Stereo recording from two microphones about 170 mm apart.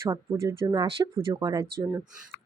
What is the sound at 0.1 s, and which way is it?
A woman's voice, 20° right (ahead or behind).